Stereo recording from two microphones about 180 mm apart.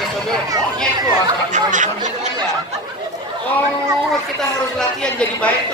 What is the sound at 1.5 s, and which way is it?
Speech, 45° right (ahead or behind).